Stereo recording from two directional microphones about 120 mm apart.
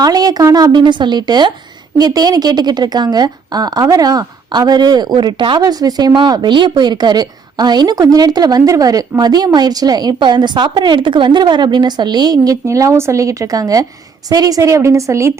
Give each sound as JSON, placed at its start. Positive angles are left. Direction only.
{"t": 0.0, "sound": "a woman's voice", "side_deg": -30}